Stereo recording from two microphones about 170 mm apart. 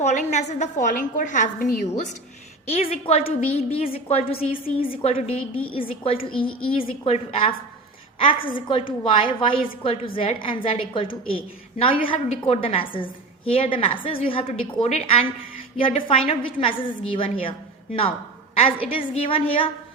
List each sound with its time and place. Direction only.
0.0 s a woman's voice: 45° left (ahead or behind)
2.6 s a woman's voice: 35° left (ahead or behind)
8.4 s a woman's voice: 55° left (ahead or behind)
9.0 s a woman's voice: 30° left (ahead or behind)
18.5 s a woman's voice: 35° left (ahead or behind)